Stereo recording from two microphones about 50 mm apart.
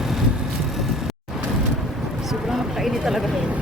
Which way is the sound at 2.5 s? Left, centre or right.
Centre.